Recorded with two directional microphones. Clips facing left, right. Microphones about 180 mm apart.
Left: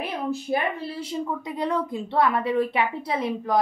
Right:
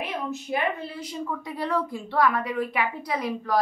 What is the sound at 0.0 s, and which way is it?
Speech, 30° left (ahead or behind).